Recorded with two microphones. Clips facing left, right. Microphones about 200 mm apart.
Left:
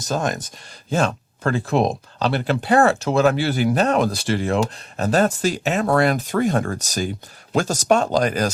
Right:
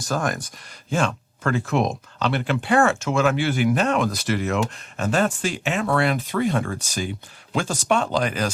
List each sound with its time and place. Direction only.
0.0 s speech: 20° left (ahead or behind)
0.9 s speech: 40° left (ahead or behind)